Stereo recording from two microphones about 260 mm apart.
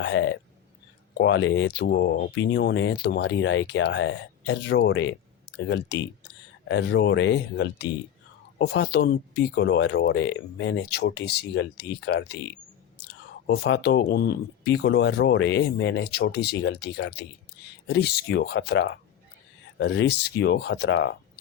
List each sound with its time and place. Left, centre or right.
0.0 s speech: left
13.5 s speech: left